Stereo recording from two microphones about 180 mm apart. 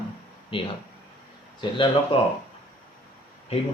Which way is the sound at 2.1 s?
30° left (ahead or behind).